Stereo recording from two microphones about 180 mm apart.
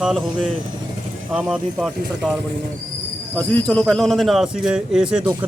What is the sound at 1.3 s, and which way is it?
Speech, 5° right (ahead or behind).